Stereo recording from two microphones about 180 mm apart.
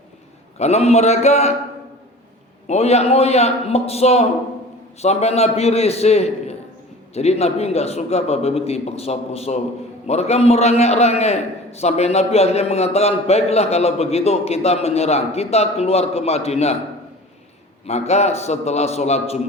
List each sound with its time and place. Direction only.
0.6 s a man's voice: 35° left (ahead or behind)
2.6 s a man's voice: 35° left (ahead or behind)
17.8 s a man's voice: 35° left (ahead or behind)